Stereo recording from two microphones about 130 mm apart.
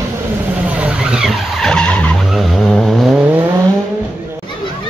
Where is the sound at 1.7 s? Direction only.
10° left (ahead or behind).